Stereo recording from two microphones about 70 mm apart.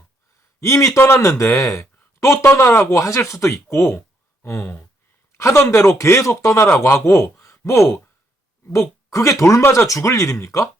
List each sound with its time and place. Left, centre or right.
0.6 s a man's voice: left
7.4 s a sound: left
8.7 s speech: left